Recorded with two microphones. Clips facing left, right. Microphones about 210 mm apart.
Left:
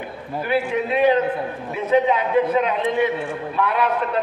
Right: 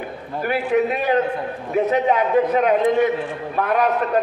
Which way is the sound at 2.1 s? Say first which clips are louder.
Right 1 dB; 45° right (ahead or behind).